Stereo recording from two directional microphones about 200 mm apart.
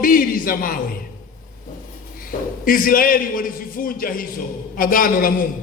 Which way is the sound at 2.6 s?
45° left (ahead or behind).